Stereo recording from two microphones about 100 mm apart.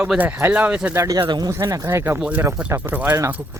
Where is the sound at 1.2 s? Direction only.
45° right (ahead or behind).